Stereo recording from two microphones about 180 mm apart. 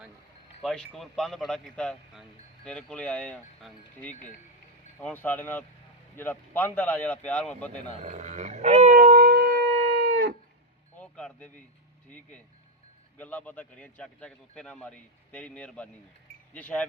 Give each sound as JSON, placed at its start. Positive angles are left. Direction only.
{"t": 0.6, "sound": "a man's voice", "side_deg": 0}
{"t": 4.1, "sound": "speech", "side_deg": 40}
{"t": 4.9, "sound": "a man's voice", "side_deg": 10}
{"t": 7.9, "sound": "speech", "side_deg": -40}
{"t": 9.0, "sound": "music", "side_deg": -55}
{"t": 11.0, "sound": "a sound", "side_deg": 5}
{"t": 13.1, "sound": "a man's voice", "side_deg": 10}